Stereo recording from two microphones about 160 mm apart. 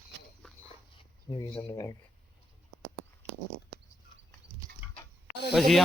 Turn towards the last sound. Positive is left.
turn(degrees=0)  # may be behind; listen again after turning